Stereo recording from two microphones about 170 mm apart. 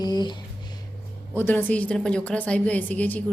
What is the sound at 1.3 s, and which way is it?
A woman's voice, 10° left (ahead or behind).